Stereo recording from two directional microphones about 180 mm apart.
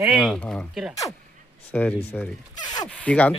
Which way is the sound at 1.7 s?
10° left (ahead or behind).